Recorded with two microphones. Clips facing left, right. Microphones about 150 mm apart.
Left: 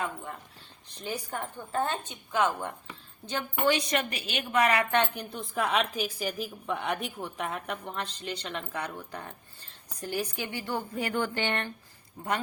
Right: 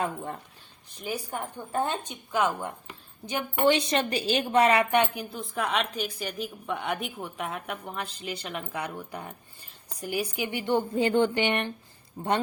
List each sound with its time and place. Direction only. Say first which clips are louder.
1.0 s a woman's voice: right 2 dB; 10° right (ahead or behind)
3.6 s a woman's voice: right 4 dB; 25° right (ahead or behind)
12.2 s speech: right 5 dB; 30° right (ahead or behind)